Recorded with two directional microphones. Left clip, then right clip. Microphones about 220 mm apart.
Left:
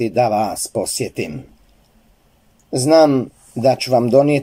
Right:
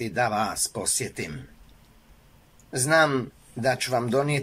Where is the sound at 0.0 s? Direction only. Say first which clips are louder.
Left 9 dB; 35° left (ahead or behind).